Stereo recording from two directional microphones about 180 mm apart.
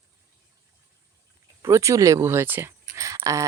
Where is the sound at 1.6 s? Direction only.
15° right (ahead or behind).